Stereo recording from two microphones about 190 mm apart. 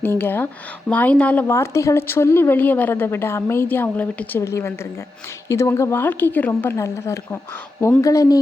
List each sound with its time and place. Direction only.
0.0 s a woman's voice: 10° left (ahead or behind)